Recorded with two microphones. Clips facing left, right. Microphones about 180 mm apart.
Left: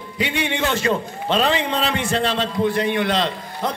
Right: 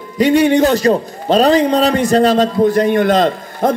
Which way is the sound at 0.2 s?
40° right (ahead or behind).